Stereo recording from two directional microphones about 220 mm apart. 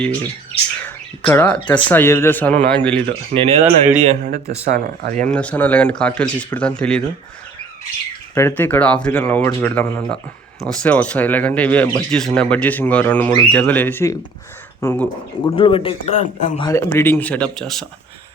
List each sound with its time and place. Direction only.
0.0 s speech: 5° left (ahead or behind)
3.3 s speech: 40° right (ahead or behind)
3.9 s speech: 30° right (ahead or behind)
5.3 s speech: 5° left (ahead or behind)
8.4 s speech: 10° left (ahead or behind)
15.4 s a man's voice: 25° left (ahead or behind)
16.6 s speech: 10° left (ahead or behind)